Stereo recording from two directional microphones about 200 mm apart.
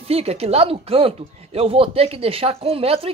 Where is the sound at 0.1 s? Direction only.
30° right (ahead or behind).